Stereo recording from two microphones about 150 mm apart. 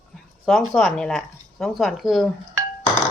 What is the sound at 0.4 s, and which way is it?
Speech, centre (ahead or behind).